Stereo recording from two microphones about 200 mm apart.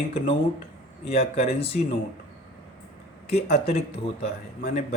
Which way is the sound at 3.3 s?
30° left (ahead or behind).